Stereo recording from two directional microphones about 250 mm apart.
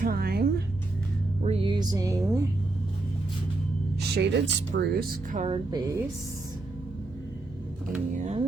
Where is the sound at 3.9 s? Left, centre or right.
Right.